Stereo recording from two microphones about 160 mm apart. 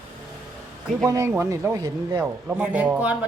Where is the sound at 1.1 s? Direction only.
20° right (ahead or behind).